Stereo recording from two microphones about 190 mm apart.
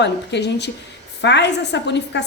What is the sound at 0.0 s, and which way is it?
A woman's voice, 65° left (ahead or behind).